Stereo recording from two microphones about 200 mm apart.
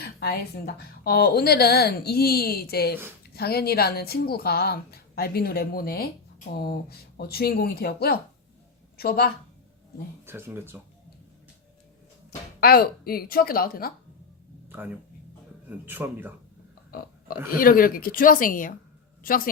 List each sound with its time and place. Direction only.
0.0 s speech: 55° left (ahead or behind)
10.2 s a man's voice: 10° right (ahead or behind)
12.5 s speech: 50° left (ahead or behind)
14.7 s a man's voice: 10° right (ahead or behind)
16.9 s a man's voice: 45° left (ahead or behind)